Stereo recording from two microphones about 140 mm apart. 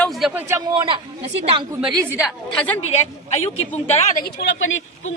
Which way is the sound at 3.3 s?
50° left (ahead or behind).